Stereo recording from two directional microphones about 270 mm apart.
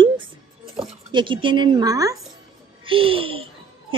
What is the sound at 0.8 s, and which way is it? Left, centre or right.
A woman's voice, centre.